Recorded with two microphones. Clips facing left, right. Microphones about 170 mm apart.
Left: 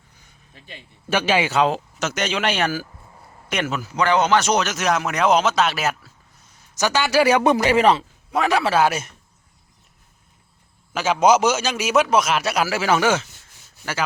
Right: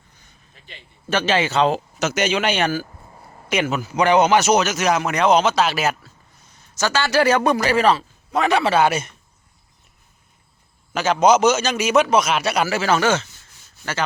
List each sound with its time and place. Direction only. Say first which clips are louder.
1.1 s speech: even; 10° left (ahead or behind)
1.7 s a man's voice: right 3 dB; 5° right (ahead or behind)
3.9 s a man's voice: right 3 dB; 15° right (ahead or behind); by 6.1 s centre (ahead or behind)
6.7 s speech: even; 15° left (ahead or behind)
8.3 s a man's voice: right 1 dB; 5° left (ahead or behind)
10.9 s a man's voice: right 1 dB; 5° left (ahead or behind)